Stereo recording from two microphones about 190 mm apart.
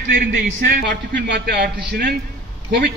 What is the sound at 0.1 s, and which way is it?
A man's voice, 50° right (ahead or behind).